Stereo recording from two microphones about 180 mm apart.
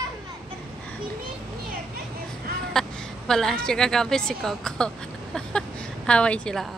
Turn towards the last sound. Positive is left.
turn(degrees=5)  # may be behind; listen again after turning